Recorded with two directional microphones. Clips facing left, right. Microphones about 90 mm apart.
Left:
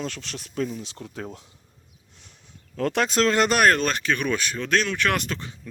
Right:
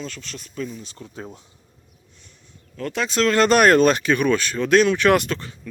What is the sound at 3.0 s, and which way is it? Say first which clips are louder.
Speech: right 3 dB; 40° left (ahead or behind).